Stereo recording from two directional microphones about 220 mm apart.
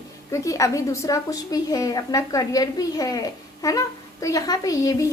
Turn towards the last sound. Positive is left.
turn(degrees=15)  # may be behind; listen again after turning